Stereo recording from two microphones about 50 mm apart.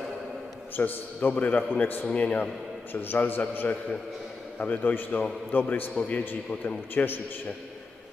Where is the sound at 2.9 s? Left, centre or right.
Left.